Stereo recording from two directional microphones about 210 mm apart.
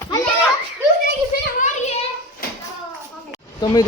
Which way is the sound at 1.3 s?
45° left (ahead or behind).